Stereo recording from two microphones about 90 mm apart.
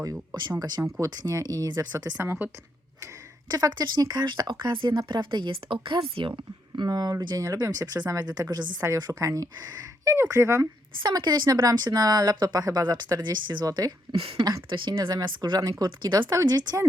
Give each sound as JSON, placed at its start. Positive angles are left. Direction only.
{"t": 0.8, "sound": "speech", "side_deg": -35}
{"t": 1.1, "sound": "speech", "side_deg": -45}
{"t": 2.1, "sound": "speech", "side_deg": -25}
{"t": 3.5, "sound": "speech", "side_deg": -50}
{"t": 11.0, "sound": "speech", "side_deg": -55}
{"t": 14.7, "sound": "speech", "side_deg": -60}
{"t": 16.3, "sound": "speech", "side_deg": -45}